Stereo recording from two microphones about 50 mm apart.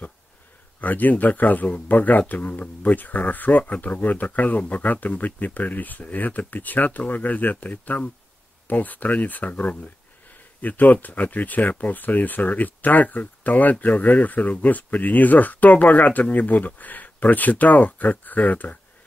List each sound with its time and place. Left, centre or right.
0.7 s speech: left